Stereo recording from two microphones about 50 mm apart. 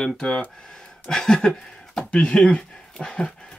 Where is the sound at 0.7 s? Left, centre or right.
Centre.